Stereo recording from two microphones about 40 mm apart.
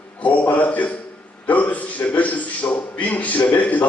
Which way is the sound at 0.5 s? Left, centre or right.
Left.